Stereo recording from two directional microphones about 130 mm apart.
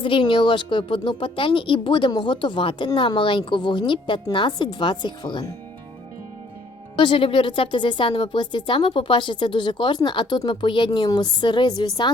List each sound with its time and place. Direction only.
0.0 s a woman's voice: 40° left (ahead or behind)
6.9 s a woman's voice: 40° left (ahead or behind)